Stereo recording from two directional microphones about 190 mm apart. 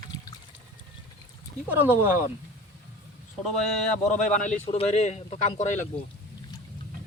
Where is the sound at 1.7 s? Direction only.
10° right (ahead or behind).